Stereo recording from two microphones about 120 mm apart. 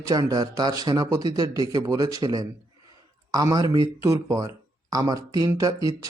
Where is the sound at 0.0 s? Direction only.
30° right (ahead or behind).